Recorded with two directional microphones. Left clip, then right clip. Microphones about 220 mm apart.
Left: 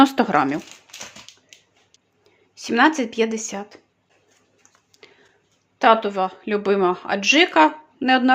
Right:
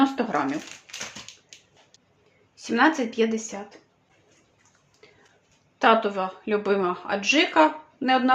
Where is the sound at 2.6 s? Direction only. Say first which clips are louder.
Left 4 dB; 40° left (ahead or behind).